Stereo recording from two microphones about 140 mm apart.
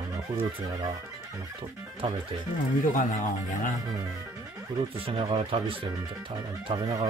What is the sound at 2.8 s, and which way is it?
Speech, 70° left (ahead or behind).